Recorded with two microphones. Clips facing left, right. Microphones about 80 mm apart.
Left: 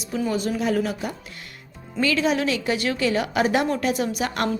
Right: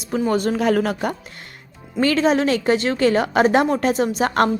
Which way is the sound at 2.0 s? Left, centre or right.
Right.